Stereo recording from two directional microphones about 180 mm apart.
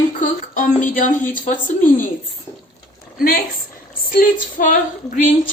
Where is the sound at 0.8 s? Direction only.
45° left (ahead or behind).